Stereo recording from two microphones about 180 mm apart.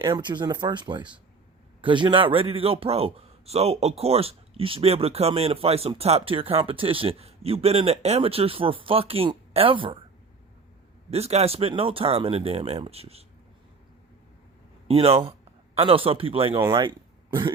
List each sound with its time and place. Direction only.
0.0 s a man's voice: 25° right (ahead or behind)
11.1 s a man's voice: 35° right (ahead or behind)
14.8 s a man's voice: 35° right (ahead or behind)